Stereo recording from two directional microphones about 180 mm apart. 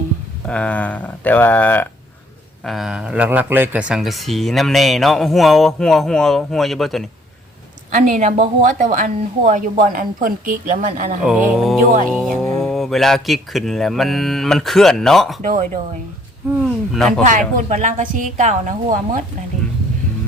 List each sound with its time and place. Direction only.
0.4 s speech: 5° left (ahead or behind)
2.6 s speech: centre (ahead or behind)
7.9 s a woman's voice: 45° right (ahead or behind)
11.3 s speech: centre (ahead or behind)
15.4 s a woman's voice: 45° right (ahead or behind)
16.6 s speech: centre (ahead or behind)
17.2 s a woman's voice: 45° right (ahead or behind)